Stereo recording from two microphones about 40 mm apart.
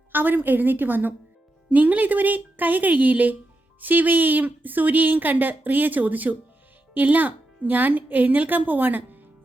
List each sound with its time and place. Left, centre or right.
0.1 s a woman's voice: right
1.7 s a woman's voice: right